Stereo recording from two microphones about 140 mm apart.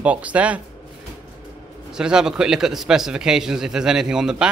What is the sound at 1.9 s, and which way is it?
Speech, 5° right (ahead or behind).